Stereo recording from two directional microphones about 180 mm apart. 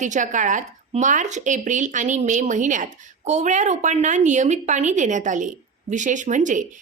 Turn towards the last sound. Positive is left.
turn(degrees=-45)  # may be behind; listen again after turning